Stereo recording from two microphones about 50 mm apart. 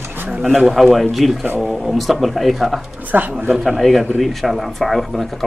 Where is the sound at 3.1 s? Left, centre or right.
Right.